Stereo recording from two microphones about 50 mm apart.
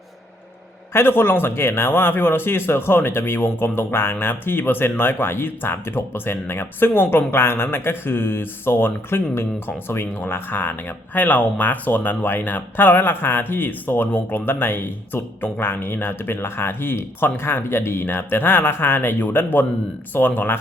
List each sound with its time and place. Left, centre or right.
0.9 s a man's voice: left